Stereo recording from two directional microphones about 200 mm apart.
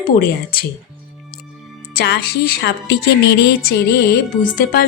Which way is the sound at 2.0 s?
55° left (ahead or behind).